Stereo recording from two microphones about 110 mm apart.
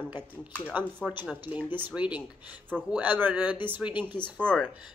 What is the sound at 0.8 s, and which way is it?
Speech, 10° left (ahead or behind).